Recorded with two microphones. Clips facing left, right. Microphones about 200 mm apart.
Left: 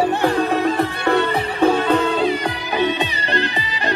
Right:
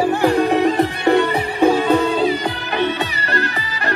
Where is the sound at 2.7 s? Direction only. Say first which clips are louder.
Left 1 dB; 15° left (ahead or behind).